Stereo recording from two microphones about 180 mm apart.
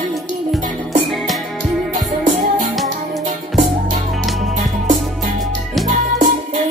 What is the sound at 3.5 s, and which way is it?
Music, centre (ahead or behind).